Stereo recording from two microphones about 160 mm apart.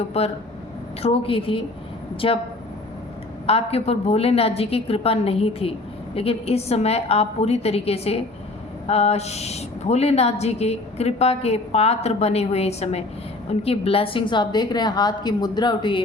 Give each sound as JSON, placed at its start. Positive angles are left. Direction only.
{"t": 0.1, "sound": "a woman's voice", "side_deg": 40}
{"t": 3.4, "sound": "a woman's voice", "side_deg": 40}